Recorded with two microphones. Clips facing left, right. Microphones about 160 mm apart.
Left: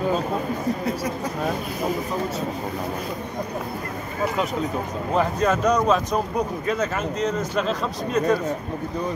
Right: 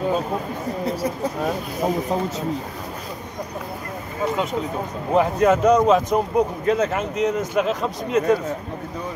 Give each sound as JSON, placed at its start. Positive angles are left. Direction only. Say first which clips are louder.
{"t": 5.1, "sound": "speech", "louder": "right 4 dB", "side_deg": -15}